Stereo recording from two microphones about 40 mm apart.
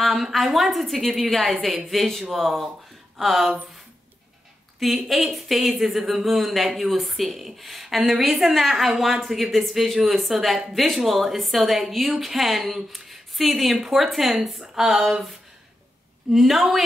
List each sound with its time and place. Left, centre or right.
0.0 s a woman's voice: centre
4.7 s a woman's voice: centre